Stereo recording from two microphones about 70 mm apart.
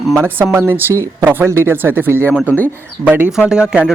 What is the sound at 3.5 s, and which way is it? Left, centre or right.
Speech, centre.